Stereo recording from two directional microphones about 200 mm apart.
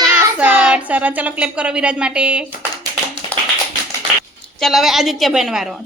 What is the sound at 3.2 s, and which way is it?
Tap, 25° left (ahead or behind).